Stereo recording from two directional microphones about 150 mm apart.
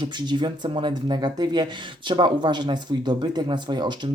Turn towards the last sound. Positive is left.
turn(degrees=-30)  # may be behind; listen again after turning